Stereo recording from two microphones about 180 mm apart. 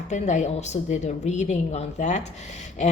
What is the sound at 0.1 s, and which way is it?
A woman's voice, 40° left (ahead or behind).